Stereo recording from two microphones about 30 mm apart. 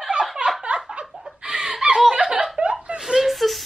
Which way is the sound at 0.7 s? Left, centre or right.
Right.